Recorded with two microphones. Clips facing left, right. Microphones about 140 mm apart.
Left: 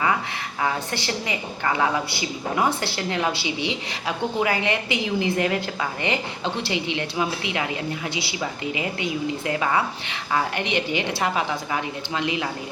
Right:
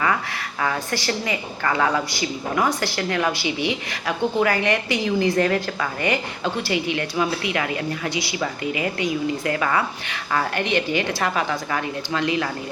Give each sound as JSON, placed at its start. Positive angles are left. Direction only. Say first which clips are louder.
{"t": 0.6, "sound": "a woman's voice", "louder": "right 1 dB", "side_deg": 20}